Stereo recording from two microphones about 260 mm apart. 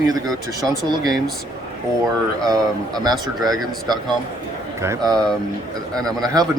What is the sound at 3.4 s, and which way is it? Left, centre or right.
Speech, centre.